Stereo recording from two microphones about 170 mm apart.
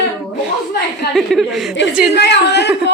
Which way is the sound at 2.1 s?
80° left.